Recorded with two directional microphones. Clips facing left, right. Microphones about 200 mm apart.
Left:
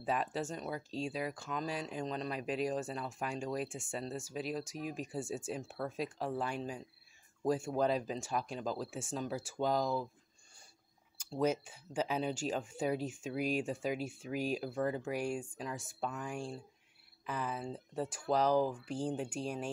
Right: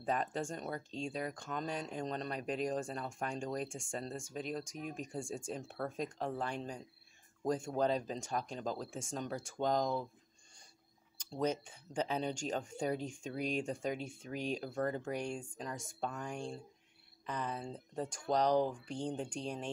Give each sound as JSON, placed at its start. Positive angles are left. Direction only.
{"t": 0.0, "sound": "speech", "side_deg": 5}
{"t": 11.1, "sound": "speech", "side_deg": 10}